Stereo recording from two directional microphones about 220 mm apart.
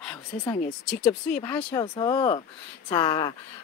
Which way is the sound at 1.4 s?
10° left (ahead or behind).